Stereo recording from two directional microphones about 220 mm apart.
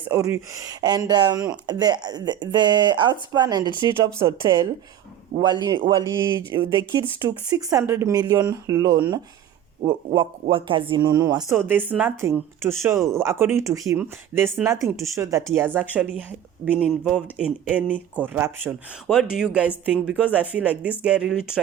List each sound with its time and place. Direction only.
0.1 s speech: 15° right (ahead or behind)
10.4 s speech: 25° right (ahead or behind); by 21.6 s 5° right (ahead or behind)